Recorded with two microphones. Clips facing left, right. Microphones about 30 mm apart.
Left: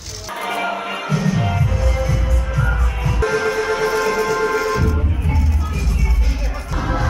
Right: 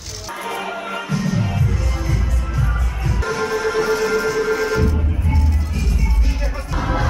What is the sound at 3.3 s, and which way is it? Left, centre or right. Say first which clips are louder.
Train: right 1 dB; centre.